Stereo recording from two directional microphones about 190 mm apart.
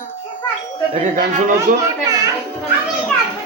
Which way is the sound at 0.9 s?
40° right (ahead or behind).